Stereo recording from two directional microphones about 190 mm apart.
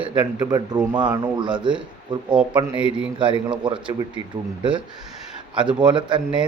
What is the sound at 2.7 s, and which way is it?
Speech, 5° right (ahead or behind).